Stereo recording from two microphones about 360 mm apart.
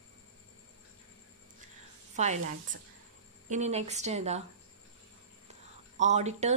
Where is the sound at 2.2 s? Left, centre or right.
Centre.